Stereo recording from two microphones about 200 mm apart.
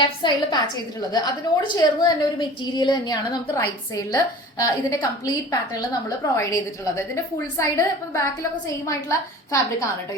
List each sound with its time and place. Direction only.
0.0 s a woman's voice: 25° left (ahead or behind)